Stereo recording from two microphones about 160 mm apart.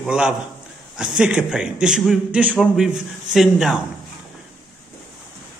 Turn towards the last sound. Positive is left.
turn(degrees=0)  # may be behind; listen again after turning